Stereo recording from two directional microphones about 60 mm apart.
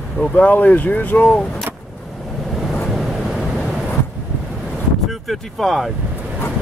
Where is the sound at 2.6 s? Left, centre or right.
Centre.